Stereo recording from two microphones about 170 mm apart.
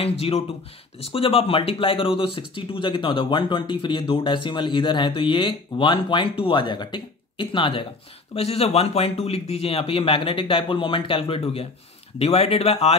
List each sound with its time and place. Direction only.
0.0 s speech: 35° left (ahead or behind)